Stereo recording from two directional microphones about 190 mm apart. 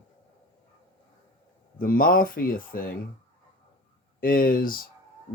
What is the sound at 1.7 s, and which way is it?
Speech, 50° left (ahead or behind).